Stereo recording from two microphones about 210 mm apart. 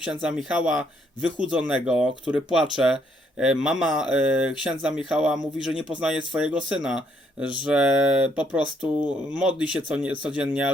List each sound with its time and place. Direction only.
0.0 s speech: 5° right (ahead or behind)